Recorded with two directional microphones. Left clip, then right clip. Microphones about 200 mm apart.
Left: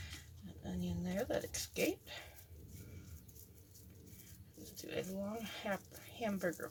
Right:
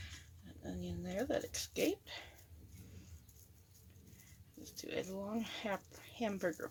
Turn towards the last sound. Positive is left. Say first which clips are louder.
# right 1 dB
turn(degrees=-30)  # may be behind; listen again after turning